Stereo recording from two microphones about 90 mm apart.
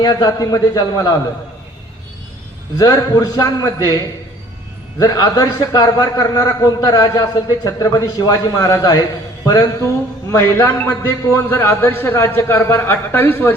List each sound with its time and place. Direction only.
0.0 s a man's voice: 50° left (ahead or behind)
2.7 s a man's voice: 40° left (ahead or behind)
10.3 s a man's voice: 25° left (ahead or behind)